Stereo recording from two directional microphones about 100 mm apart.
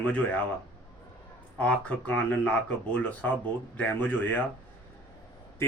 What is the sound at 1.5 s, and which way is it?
A man's voice, 10° left (ahead or behind).